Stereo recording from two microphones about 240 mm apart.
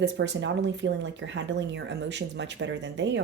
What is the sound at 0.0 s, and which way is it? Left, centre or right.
A woman's voice, right.